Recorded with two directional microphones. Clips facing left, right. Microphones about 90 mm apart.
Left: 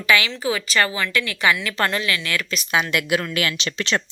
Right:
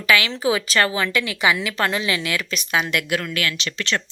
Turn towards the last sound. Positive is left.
turn(degrees=20)  # may be behind; listen again after turning